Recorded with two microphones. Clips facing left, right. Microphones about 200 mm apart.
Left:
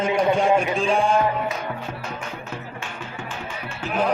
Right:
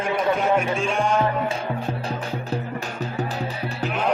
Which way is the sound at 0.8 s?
35° left (ahead or behind).